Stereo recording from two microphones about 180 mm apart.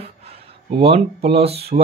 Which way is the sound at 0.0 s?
35° right (ahead or behind).